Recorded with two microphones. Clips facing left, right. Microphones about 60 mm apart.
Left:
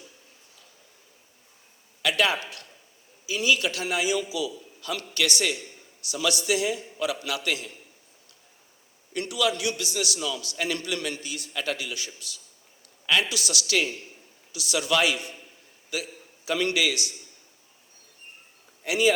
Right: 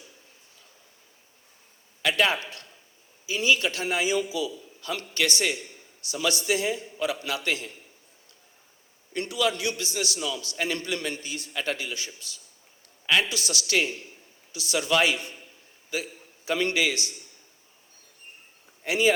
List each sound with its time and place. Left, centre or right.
2.0 s a man's voice: right
9.1 s a man's voice: right
18.9 s a man's voice: right